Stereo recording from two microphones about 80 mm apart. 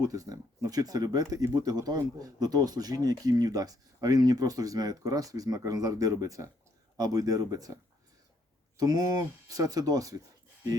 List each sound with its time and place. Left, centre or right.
0.0 s speech: right
8.8 s speech: right